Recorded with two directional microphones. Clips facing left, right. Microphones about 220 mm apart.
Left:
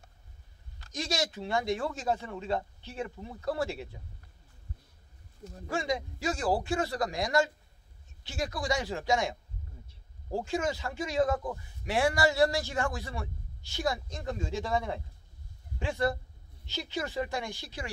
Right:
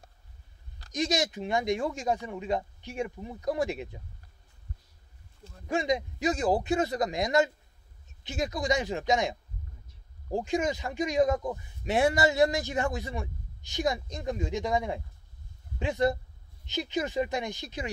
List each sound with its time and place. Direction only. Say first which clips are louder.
0.9 s speech: right 4 dB; 20° right (ahead or behind)
5.7 s a man's voice: right 4 dB; 20° right (ahead or behind)